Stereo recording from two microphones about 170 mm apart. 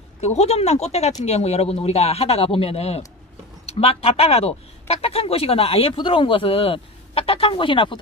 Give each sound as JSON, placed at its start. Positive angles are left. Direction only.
{"t": 0.2, "sound": "speech", "side_deg": 40}